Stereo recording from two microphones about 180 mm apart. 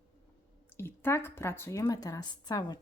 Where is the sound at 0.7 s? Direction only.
15° left (ahead or behind).